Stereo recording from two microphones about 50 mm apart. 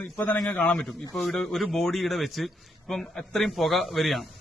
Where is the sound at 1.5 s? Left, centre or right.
Centre.